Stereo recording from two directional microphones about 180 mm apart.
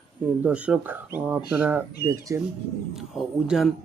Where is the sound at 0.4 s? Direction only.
5° right (ahead or behind).